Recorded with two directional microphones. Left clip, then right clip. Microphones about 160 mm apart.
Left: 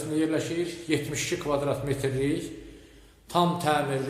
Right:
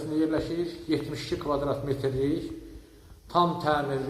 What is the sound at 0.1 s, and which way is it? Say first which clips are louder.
A man's voice: even; 45° left (ahead or behind).